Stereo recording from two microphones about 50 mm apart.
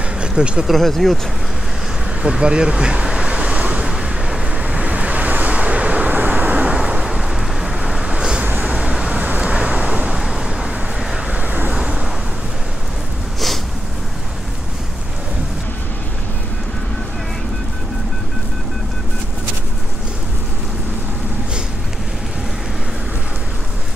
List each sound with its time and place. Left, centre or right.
0.4 s speech: centre
0.7 s speech: centre
2.2 s vehicle: centre
6.7 s vehicle: centre
8.5 s vehicle: right
8.7 s vehicle: centre
10.1 s vehicle: centre
11.3 s vehicle: right
11.7 s vehicle: centre